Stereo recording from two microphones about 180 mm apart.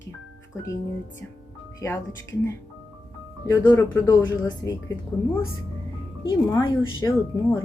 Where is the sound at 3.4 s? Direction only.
20° left (ahead or behind).